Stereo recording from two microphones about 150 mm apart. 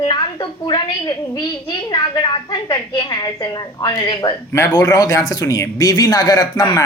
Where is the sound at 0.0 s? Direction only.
30° left (ahead or behind).